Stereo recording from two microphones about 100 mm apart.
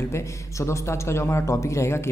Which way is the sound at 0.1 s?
30° left (ahead or behind).